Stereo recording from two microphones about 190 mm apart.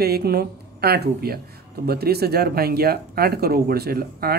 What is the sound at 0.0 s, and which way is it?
Speech, 55° right (ahead or behind).